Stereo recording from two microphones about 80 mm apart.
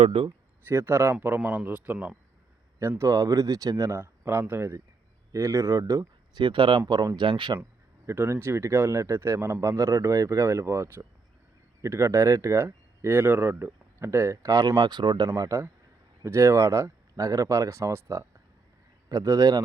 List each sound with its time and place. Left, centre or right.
0.1 s speech: right
0.7 s a man's voice: right
3.0 s speech: right
6.3 s speech: right
7.2 s speech: right
7.6 s speech: right
14.8 s speech: right
15.4 s speech: right